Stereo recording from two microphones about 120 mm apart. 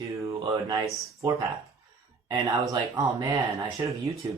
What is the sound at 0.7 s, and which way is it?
Speech, 25° right (ahead or behind).